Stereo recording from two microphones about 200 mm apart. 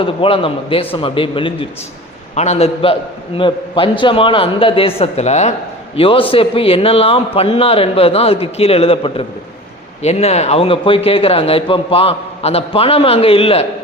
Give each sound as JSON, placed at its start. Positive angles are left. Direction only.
{"t": 0.0, "sound": "a man's voice", "side_deg": 25}